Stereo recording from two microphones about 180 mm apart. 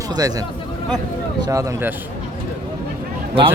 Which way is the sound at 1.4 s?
20° right (ahead or behind).